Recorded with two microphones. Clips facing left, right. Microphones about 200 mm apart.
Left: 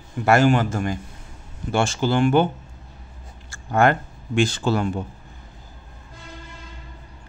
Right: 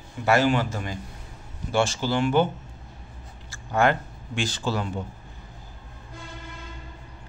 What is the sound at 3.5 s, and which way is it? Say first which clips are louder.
Speech: left 3 dB; 50° left (ahead or behind).